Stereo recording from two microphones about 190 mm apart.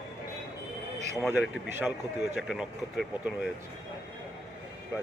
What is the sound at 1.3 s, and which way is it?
A man's voice, 10° right (ahead or behind).